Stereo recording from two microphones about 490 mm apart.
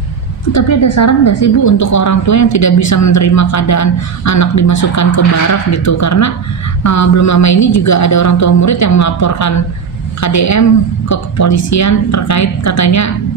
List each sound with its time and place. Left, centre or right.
0.5 s a woman's voice: left